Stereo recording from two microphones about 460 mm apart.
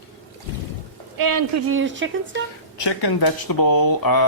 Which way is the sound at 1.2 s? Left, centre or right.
Right.